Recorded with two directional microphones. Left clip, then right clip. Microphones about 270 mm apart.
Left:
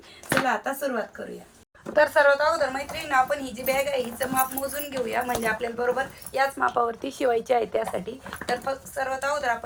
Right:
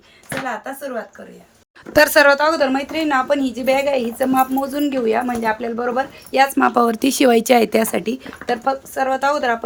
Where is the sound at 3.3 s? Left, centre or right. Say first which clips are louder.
Right 9 dB; right.